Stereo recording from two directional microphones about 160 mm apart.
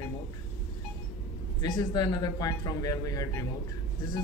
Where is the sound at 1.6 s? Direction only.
25° left (ahead or behind).